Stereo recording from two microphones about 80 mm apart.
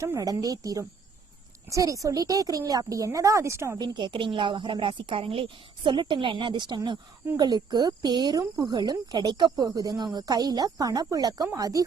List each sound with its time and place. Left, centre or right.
0.0 s speech: right
3.8 s a woman's voice: right
7.3 s speech: right